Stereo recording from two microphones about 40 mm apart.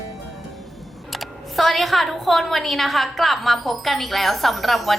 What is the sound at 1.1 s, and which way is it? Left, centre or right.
A woman's voice, centre.